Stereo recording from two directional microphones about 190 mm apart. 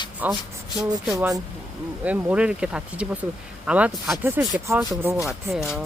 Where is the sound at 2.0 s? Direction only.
10° right (ahead or behind).